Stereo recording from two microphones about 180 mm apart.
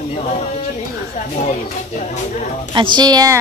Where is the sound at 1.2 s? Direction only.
40° left (ahead or behind).